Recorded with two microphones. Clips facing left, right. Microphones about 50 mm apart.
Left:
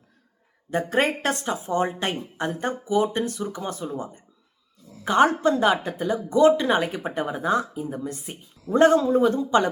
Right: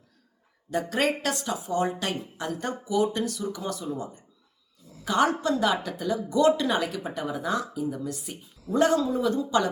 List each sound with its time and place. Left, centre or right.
0.7 s a woman's voice: left